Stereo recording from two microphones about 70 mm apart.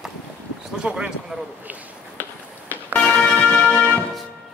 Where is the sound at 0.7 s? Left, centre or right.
Centre.